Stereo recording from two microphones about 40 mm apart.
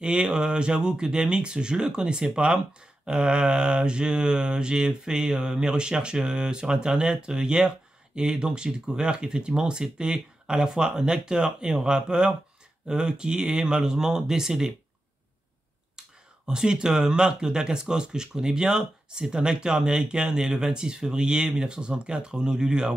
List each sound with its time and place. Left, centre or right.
0.0 s mantra: centre
12.8 s speech: centre
16.0 s speech: centre
20.1 s mantra: centre